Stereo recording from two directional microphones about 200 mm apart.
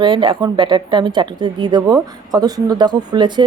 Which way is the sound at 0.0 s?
25° right (ahead or behind).